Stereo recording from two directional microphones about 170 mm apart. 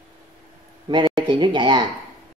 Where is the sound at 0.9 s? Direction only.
30° right (ahead or behind).